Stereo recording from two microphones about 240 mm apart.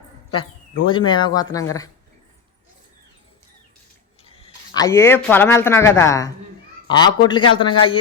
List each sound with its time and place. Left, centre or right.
0.9 s a man's voice: centre
4.2 s a man's voice: left